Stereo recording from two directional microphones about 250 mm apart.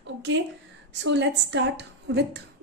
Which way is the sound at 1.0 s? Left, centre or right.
Right.